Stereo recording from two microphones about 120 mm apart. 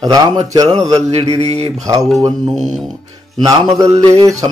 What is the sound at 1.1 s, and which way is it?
Mantra, 60° right (ahead or behind).